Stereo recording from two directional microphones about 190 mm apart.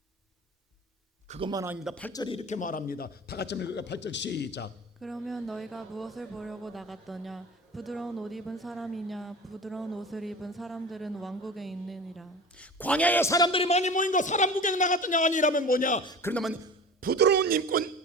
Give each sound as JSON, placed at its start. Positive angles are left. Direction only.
{"t": 1.3, "sound": "a man's voice", "side_deg": -25}
{"t": 1.7, "sound": "speech", "side_deg": 0}
{"t": 2.1, "sound": "a man's voice", "side_deg": 25}
{"t": 4.9, "sound": "speech", "side_deg": 0}
{"t": 16.0, "sound": "speech", "side_deg": 20}
{"t": 16.3, "sound": "speech", "side_deg": 0}
{"t": 17.0, "sound": "speech", "side_deg": -55}